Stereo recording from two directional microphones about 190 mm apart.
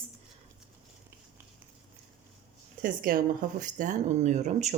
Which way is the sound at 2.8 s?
45° right (ahead or behind).